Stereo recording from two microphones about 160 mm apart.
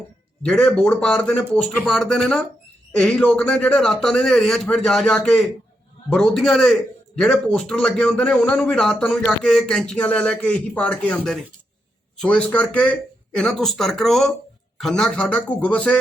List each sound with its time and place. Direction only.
0.4 s a man's voice: 5° left (ahead or behind)